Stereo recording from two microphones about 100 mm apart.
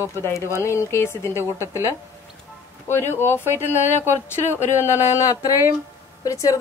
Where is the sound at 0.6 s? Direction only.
30° left (ahead or behind).